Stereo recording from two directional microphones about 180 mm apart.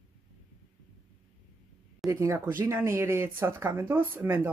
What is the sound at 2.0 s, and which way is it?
Speech, 15° right (ahead or behind).